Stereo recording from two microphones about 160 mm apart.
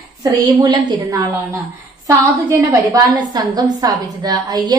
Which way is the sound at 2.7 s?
20° right (ahead or behind).